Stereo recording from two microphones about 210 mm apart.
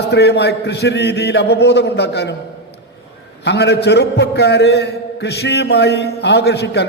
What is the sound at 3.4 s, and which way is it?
A man's voice, 55° left (ahead or behind).